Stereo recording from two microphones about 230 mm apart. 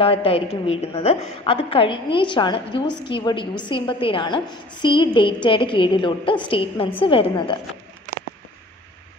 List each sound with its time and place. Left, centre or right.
0.0 s a woman's voice: left